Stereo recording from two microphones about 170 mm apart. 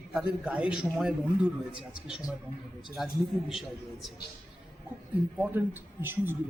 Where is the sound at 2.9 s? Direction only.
Centre (ahead or behind).